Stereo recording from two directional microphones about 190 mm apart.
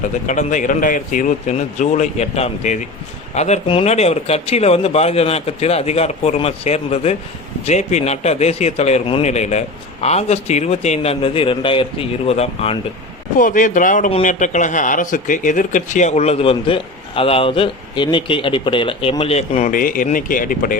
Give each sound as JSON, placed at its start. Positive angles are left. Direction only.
{"t": 0.3, "sound": "a man's voice", "side_deg": 40}
{"t": 13.4, "sound": "a man's voice", "side_deg": 45}